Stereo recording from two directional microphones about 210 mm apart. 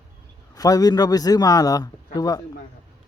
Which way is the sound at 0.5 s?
15° left (ahead or behind).